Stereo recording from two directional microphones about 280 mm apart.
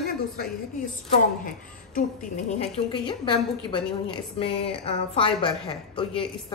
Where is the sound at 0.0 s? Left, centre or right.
Left.